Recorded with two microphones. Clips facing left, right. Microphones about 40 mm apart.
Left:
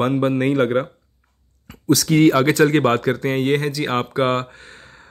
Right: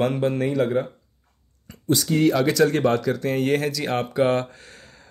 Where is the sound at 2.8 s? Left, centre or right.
Left.